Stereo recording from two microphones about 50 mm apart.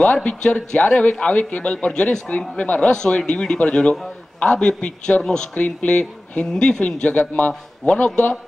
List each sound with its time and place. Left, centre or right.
0.0 s a man's voice: left
6.5 s a man's voice: centre
6.8 s a man's voice: left